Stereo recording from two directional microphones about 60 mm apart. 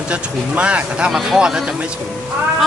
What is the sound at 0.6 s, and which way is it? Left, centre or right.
Speech, centre.